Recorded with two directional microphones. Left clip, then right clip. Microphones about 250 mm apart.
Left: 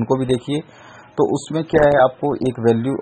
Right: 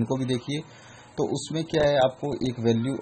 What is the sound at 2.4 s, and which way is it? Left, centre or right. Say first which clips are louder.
Speech: left 8 dB; centre.